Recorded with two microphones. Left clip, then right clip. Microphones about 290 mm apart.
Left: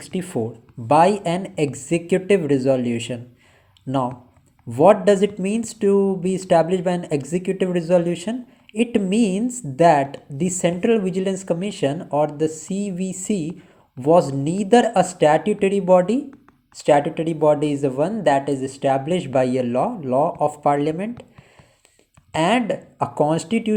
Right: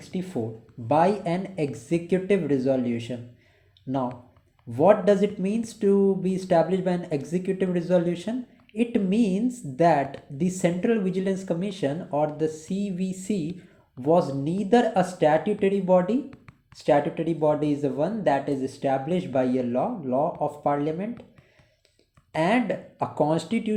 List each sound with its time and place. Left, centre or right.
0.1 s speech: left
4.7 s speech: left
22.3 s speech: left